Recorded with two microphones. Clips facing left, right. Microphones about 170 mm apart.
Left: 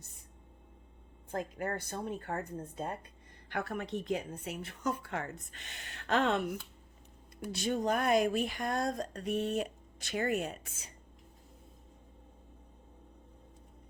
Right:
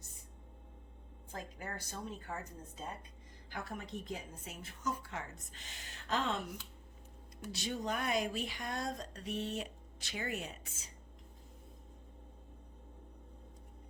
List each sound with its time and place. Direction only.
1.3 s a woman's voice: 60° left (ahead or behind)
7.5 s speech: 50° left (ahead or behind)